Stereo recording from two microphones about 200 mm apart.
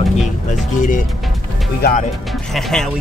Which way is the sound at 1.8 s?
50° left (ahead or behind).